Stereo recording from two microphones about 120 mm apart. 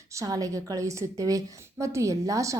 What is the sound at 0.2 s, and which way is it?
A woman's voice, 30° right (ahead or behind).